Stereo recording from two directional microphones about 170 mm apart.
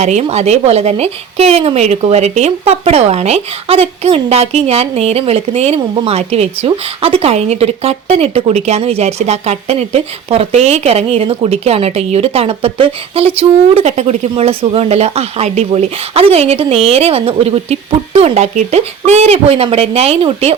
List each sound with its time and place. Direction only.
0.0 s a woman's voice: 40° right (ahead or behind)